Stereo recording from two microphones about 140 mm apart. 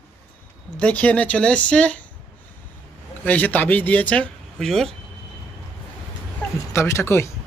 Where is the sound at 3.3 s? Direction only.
10° left (ahead or behind).